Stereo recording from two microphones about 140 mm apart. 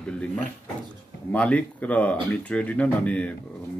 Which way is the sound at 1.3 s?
10° left (ahead or behind).